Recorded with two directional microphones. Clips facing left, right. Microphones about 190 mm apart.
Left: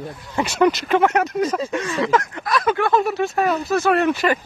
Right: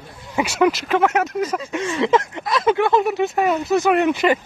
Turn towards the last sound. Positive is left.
turn(degrees=-20)  # may be behind; listen again after turning